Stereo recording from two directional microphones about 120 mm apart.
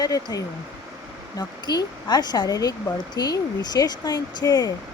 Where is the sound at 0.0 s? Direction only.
35° left (ahead or behind).